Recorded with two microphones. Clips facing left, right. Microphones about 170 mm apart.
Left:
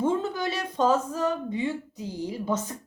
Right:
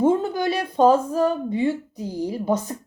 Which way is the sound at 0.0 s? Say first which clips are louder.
Right 6 dB; 45° right (ahead or behind).